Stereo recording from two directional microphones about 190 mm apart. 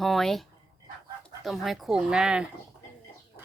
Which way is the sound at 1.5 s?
Centre (ahead or behind).